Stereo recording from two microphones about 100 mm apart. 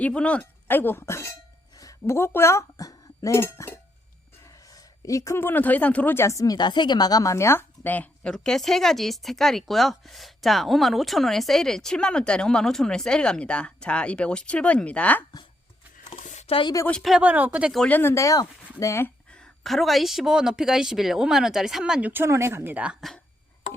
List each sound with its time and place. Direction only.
0.0 s speech: 10° left (ahead or behind)
6.2 s a woman's voice: 35° left (ahead or behind)
7.9 s speech: 15° left (ahead or behind)
16.0 s a sound: 70° left (ahead or behind)
17.0 s speech: centre (ahead or behind)
17.2 s speech: 15° right (ahead or behind)
17.8 s speech: 20° left (ahead or behind)
18.1 s a woman's voice: 35° left (ahead or behind)
19.0 s speech: 10° left (ahead or behind); by 22.1 s 5° right (ahead or behind)
22.1 s speech: 25° right (ahead or behind)
23.0 s speech: centre (ahead or behind)